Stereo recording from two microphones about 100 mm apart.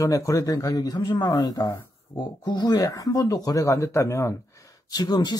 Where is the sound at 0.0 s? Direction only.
35° left (ahead or behind).